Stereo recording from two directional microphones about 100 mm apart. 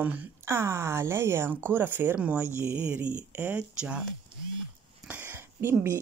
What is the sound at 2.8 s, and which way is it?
Speech, 15° right (ahead or behind).